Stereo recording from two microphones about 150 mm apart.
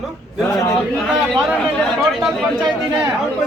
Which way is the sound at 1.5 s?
Centre (ahead or behind).